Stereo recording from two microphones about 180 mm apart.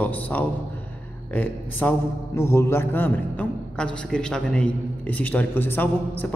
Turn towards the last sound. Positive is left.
turn(degrees=10)  # may be behind; listen again after turning